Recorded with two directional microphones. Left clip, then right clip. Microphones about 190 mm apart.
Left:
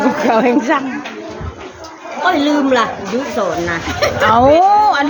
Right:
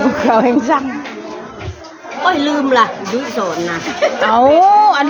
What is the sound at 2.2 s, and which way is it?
Speech, 20° right (ahead or behind).